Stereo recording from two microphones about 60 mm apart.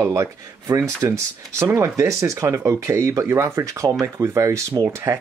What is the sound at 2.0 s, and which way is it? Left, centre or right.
Speech, right.